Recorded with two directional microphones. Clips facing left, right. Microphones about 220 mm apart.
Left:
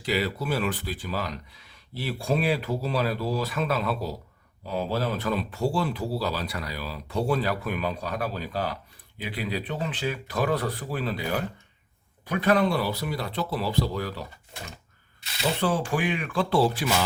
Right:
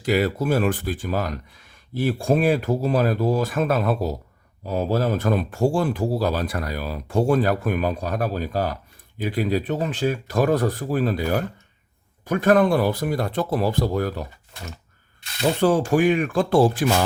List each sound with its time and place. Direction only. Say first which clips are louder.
0.0 s speech: right 6 dB; 50° right (ahead or behind)
15.4 s speech: right 7 dB; 45° right (ahead or behind)